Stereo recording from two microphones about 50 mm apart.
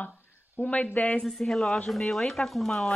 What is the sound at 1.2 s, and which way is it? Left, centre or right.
Speech, centre.